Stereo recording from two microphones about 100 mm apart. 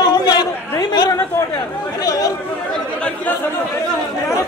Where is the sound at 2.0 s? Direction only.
40° left (ahead or behind).